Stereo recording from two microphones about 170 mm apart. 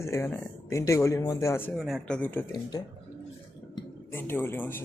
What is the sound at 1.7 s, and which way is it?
Speech, centre (ahead or behind).